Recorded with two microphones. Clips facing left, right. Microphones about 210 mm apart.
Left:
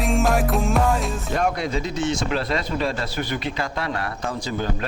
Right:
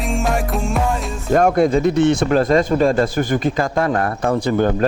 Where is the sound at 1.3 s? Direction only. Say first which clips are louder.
Right 11 dB; 50° right (ahead or behind).